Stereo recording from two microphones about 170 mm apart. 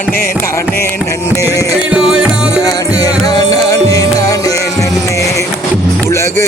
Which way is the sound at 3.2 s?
20° left (ahead or behind).